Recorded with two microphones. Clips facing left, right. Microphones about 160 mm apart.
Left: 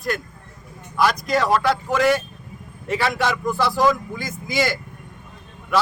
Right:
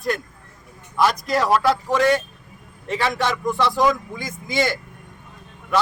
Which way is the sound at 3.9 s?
20° right (ahead or behind).